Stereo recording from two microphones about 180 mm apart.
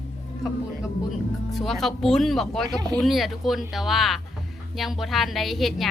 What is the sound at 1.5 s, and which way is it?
Speech, centre (ahead or behind).